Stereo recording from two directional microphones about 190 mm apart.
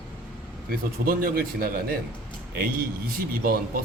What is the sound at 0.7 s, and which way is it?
A man's voice, 50° right (ahead or behind).